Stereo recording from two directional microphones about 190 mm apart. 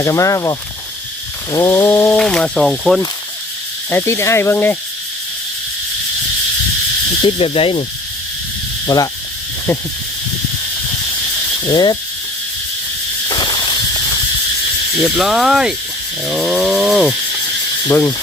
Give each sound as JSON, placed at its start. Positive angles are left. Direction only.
{"t": 0.0, "sound": "cricket", "side_deg": 15}
{"t": 1.5, "sound": "cricket", "side_deg": 15}
{"t": 2.1, "sound": "speech", "side_deg": 5}
{"t": 3.8, "sound": "cricket", "side_deg": 10}
{"t": 7.2, "sound": "speech", "side_deg": 30}
{"t": 8.9, "sound": "speech", "side_deg": 20}
{"t": 11.7, "sound": "speech", "side_deg": 20}
{"t": 13.2, "sound": "snake", "side_deg": 20}
{"t": 15.0, "sound": "speech", "side_deg": 0}
{"t": 16.2, "sound": "wild animals", "side_deg": 0}
{"t": 17.8, "sound": "cricket", "side_deg": 15}